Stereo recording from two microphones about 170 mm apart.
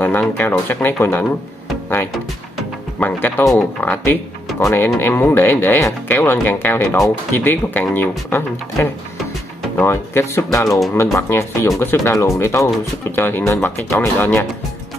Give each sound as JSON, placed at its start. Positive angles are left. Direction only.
{"t": 0.0, "sound": "speech", "side_deg": 10}
{"t": 3.0, "sound": "speech", "side_deg": 10}